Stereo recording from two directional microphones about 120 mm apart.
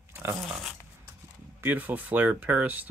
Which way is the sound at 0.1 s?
20° right (ahead or behind).